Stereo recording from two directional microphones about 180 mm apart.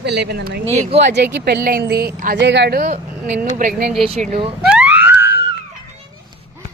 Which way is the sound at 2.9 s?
50° right (ahead or behind).